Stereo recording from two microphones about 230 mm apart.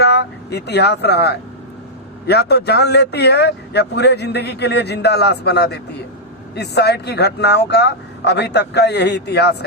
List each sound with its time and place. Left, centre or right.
0.0 s a man's voice: left